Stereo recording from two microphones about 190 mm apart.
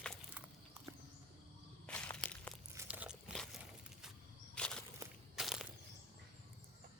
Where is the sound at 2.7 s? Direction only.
10° right (ahead or behind).